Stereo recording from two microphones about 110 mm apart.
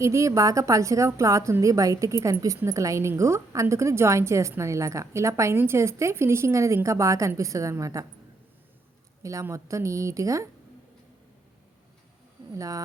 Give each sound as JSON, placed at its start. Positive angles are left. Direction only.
{"t": 0.0, "sound": "a woman's voice", "side_deg": -30}
{"t": 9.2, "sound": "a woman's voice", "side_deg": -30}
{"t": 12.5, "sound": "speech", "side_deg": -30}